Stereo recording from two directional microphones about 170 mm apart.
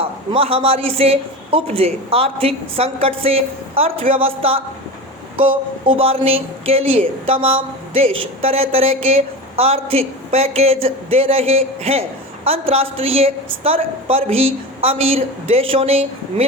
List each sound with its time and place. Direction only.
0.0 s speech: 35° right (ahead or behind)